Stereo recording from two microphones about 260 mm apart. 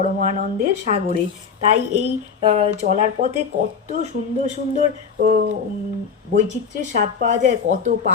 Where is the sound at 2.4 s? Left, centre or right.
Right.